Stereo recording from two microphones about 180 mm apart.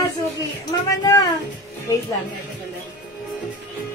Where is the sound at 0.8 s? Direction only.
20° left (ahead or behind).